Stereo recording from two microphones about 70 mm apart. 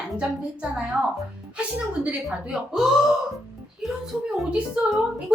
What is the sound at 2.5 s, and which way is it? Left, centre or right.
A woman's voice, centre.